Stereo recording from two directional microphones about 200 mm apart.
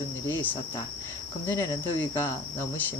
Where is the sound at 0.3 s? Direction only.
10° left (ahead or behind).